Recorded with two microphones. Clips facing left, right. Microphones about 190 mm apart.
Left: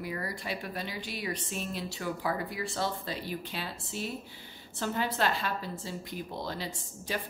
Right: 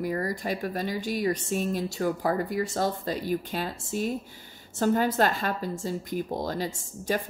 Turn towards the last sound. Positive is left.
turn(degrees=-45)  # may be behind; listen again after turning